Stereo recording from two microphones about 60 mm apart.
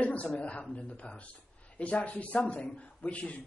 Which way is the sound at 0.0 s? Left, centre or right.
Left.